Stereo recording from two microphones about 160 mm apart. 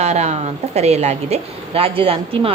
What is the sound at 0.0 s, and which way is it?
A woman's voice, 45° right (ahead or behind).